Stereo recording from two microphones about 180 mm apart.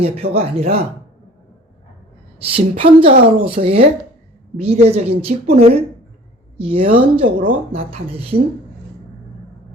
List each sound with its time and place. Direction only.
0.0 s speech: 35° right (ahead or behind)
2.6 s speech: 30° right (ahead or behind)